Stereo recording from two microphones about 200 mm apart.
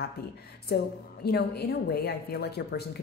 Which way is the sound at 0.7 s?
55° left (ahead or behind).